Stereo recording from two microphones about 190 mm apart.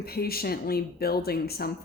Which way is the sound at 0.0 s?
55° left (ahead or behind).